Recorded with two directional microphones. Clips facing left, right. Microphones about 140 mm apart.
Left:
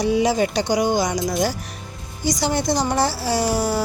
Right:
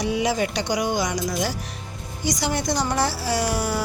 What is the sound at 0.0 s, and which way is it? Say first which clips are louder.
A woman's voice: left 4 dB; 30° left (ahead or behind).